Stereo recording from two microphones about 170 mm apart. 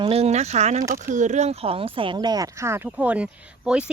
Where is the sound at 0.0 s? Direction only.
35° right (ahead or behind).